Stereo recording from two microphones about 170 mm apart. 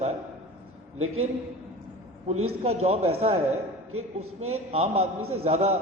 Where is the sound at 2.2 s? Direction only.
40° right (ahead or behind).